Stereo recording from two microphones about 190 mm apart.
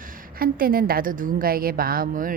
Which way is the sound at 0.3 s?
50° right (ahead or behind).